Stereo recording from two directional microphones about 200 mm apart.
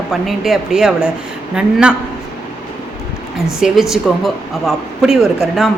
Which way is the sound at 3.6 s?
Centre (ahead or behind).